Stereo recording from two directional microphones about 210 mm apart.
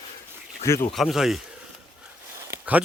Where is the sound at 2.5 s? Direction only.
5° right (ahead or behind).